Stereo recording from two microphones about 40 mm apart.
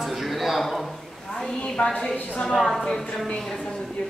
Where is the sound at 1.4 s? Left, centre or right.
Centre.